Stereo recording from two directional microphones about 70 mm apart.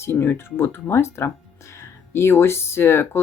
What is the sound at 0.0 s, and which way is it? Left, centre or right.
Speech, left.